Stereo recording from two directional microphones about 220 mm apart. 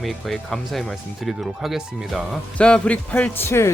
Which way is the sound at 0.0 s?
Centre (ahead or behind).